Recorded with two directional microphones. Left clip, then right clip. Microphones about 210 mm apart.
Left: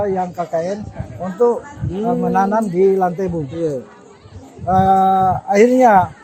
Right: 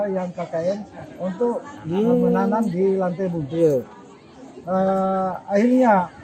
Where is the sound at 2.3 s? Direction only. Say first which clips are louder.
Left 6 dB; 60° left (ahead or behind).